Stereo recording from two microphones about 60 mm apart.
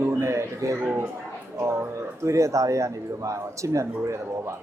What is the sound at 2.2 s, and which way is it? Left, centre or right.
A man's voice, right.